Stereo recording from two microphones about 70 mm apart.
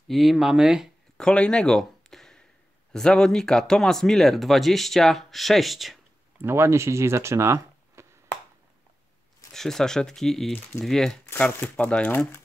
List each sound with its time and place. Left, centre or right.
0.1 s speech: centre
1.1 s a sound: centre
2.9 s speech: centre
6.3 s speech: right
9.5 s speech: centre
11.3 s speech: centre
12.1 s speech: left